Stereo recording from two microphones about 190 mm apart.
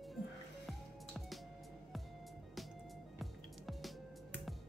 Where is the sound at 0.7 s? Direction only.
Centre (ahead or behind).